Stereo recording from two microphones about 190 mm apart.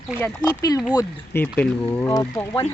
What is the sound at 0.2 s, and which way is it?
Speech, 15° left (ahead or behind).